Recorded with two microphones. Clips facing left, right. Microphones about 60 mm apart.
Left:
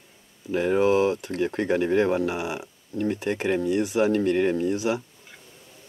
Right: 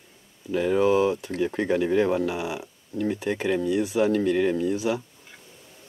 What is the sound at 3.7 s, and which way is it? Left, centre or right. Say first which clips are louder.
Speech: even; left.